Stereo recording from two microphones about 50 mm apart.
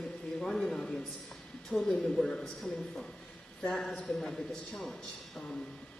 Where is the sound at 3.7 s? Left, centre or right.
Centre.